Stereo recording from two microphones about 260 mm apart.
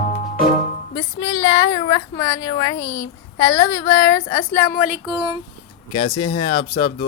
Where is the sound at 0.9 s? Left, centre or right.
Centre.